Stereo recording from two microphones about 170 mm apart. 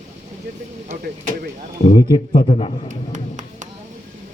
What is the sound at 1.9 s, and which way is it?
Speech, 25° left (ahead or behind).